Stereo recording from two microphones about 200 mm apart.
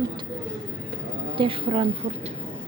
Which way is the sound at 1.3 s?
25° right (ahead or behind).